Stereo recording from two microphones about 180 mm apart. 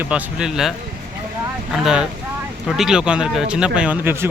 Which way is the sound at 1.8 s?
5° right (ahead or behind).